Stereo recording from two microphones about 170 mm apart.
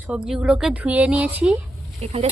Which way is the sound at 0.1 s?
5° right (ahead or behind).